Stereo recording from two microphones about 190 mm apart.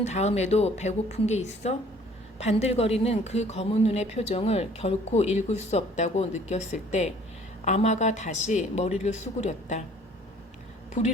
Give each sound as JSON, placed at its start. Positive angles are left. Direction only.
{"t": 0.0, "sound": "a woman's voice", "side_deg": 35}